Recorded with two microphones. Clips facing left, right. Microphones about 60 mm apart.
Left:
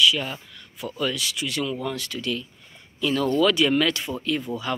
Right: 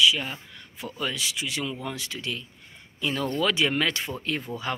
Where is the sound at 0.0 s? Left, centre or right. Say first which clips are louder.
Left 1 dB; centre.